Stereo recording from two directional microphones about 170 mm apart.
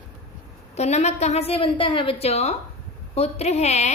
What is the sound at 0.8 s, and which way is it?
A woman's voice, 40° left (ahead or behind).